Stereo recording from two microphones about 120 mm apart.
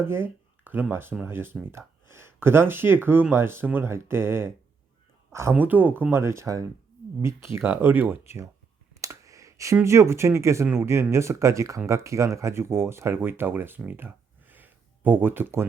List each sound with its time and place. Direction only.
0.0 s speech: 20° right (ahead or behind)
5.5 s speech: 15° right (ahead or behind)
9.0 s a sound: 25° right (ahead or behind)
9.8 s speech: 25° right (ahead or behind)